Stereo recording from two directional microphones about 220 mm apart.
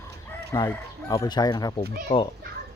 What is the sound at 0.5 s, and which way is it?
Speech, 15° left (ahead or behind).